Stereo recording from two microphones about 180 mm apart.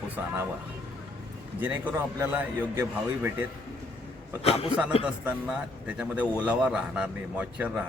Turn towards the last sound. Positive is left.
turn(degrees=-10)  # may be behind; listen again after turning